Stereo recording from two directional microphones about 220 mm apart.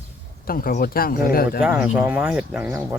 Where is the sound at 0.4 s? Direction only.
40° left (ahead or behind).